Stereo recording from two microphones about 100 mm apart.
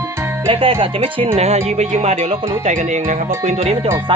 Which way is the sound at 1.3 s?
90° right.